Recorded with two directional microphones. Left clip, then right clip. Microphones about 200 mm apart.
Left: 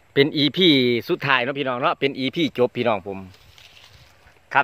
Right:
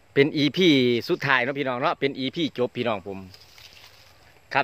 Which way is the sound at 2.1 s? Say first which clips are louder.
Left 4 dB; 45° left (ahead or behind).